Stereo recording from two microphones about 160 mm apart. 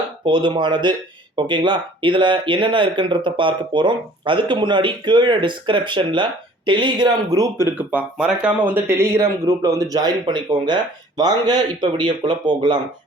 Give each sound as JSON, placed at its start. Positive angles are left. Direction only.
{"t": 0.3, "sound": "speech", "side_deg": -30}
{"t": 7.8, "sound": "speech", "side_deg": -10}